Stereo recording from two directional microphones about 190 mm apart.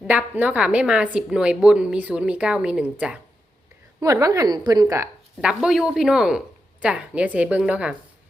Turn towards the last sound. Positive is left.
turn(degrees=-5)  # may be behind; listen again after turning